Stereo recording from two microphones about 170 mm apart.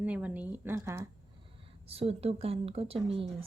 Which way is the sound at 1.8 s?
35° right (ahead or behind).